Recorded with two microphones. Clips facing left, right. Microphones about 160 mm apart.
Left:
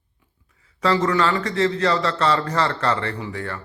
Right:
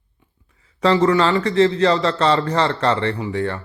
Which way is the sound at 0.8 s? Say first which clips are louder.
Right 4 dB; 25° right (ahead or behind).